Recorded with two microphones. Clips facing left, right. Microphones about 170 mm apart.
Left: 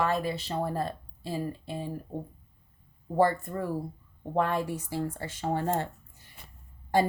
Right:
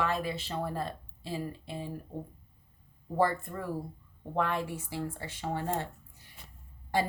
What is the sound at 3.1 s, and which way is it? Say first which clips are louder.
Speech: left 4 dB; 40° left (ahead or behind).